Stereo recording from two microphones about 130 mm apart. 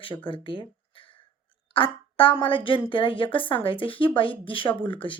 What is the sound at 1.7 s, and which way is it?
A woman's voice, 40° left (ahead or behind).